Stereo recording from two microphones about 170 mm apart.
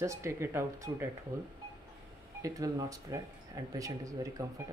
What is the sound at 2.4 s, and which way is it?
Speech, 20° right (ahead or behind).